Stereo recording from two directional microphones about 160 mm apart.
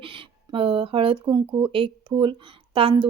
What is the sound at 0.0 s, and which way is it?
Speech, 35° right (ahead or behind).